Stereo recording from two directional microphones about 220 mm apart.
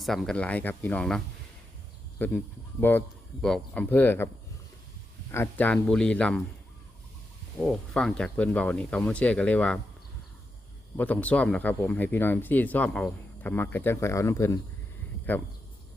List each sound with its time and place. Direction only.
0.0 s speech: centre (ahead or behind)
5.3 s speech: 10° left (ahead or behind)
7.6 s speech: 5° left (ahead or behind)
10.9 s speech: 5° left (ahead or behind)